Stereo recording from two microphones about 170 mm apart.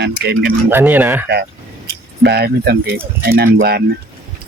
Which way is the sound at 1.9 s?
75° right (ahead or behind).